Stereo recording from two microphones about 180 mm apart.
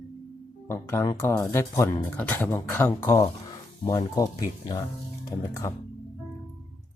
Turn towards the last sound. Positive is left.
turn(degrees=20)  # may be behind; listen again after turning